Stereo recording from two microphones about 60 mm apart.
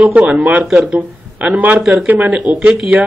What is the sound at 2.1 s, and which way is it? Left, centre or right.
Speech, right.